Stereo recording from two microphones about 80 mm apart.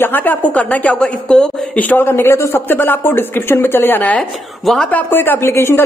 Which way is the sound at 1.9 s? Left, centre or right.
Left.